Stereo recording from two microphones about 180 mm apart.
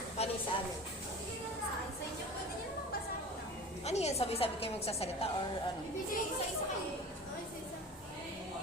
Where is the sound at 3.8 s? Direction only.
35° left (ahead or behind).